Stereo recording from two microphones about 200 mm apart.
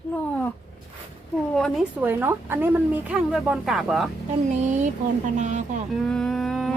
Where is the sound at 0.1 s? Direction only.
5° left (ahead or behind).